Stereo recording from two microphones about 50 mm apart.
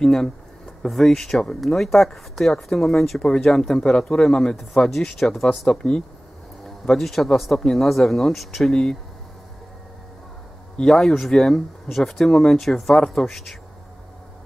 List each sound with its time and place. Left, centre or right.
0.0 s speech: centre
6.6 s speech: centre
10.8 s speech: centre